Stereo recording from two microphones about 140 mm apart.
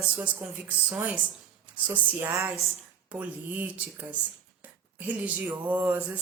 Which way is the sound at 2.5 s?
5° right (ahead or behind).